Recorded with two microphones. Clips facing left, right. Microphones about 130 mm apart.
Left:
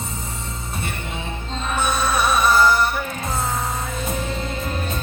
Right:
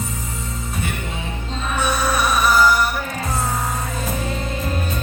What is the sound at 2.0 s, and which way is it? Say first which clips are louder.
Music: left 1 dB; 25° left (ahead or behind).